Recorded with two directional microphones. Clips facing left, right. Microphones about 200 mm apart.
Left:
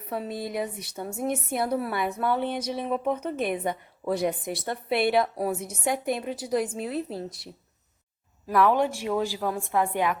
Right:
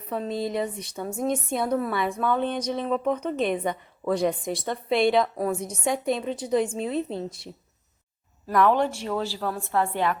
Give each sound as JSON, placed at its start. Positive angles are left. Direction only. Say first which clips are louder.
{"t": 0.3, "sound": "speech", "louder": "right 4 dB", "side_deg": -25}
{"t": 0.5, "sound": "a woman's voice", "louder": "right 2 dB", "side_deg": 5}
{"t": 8.4, "sound": "a woman's voice", "louder": "right 1 dB", "side_deg": 5}